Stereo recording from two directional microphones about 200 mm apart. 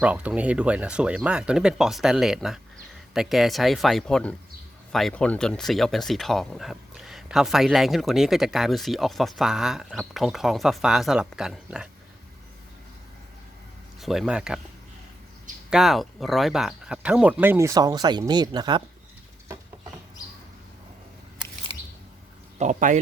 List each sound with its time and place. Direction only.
0.0 s speech: 5° right (ahead or behind)
14.0 s speech: centre (ahead or behind)
15.7 s speech: centre (ahead or behind); by 18.8 s 20° right (ahead or behind)
22.5 s speech: 35° right (ahead or behind)